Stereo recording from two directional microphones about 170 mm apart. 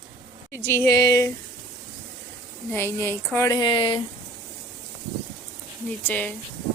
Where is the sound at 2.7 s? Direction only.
15° left (ahead or behind).